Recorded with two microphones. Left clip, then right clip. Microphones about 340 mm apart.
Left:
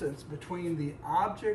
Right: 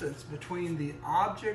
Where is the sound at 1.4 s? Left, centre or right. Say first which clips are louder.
Left 3 dB; centre.